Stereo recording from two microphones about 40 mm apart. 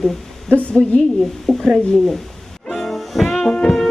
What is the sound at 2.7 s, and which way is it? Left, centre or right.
Music, centre.